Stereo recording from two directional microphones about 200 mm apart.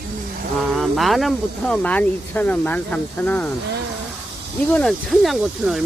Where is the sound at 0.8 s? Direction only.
Centre (ahead or behind).